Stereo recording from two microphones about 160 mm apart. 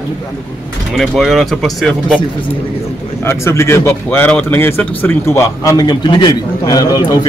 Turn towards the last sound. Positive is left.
turn(degrees=25)  # may be behind; listen again after turning